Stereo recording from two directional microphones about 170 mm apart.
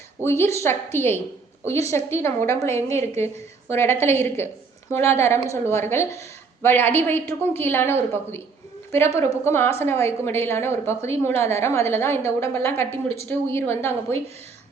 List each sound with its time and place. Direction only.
0.2 s a woman's voice: 15° left (ahead or behind)